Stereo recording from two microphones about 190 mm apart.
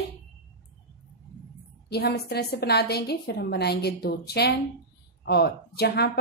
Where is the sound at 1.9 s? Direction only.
60° left (ahead or behind).